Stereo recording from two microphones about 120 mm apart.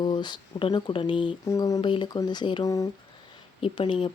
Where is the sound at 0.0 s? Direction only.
40° left (ahead or behind).